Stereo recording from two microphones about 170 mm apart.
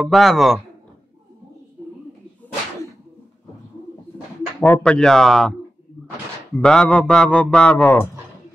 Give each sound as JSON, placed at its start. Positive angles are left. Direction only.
{"t": 0.0, "sound": "a man's voice", "side_deg": 0}
{"t": 4.6, "sound": "a man's voice", "side_deg": 10}
{"t": 6.5, "sound": "a man's voice", "side_deg": 5}